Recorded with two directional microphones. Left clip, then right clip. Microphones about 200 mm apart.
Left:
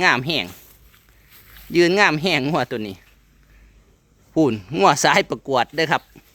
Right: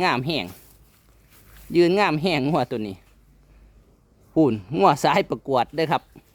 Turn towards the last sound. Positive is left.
turn(degrees=0)  # may be behind; listen again after turning